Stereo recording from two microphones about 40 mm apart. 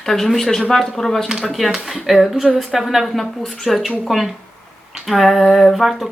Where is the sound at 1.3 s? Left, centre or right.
Centre.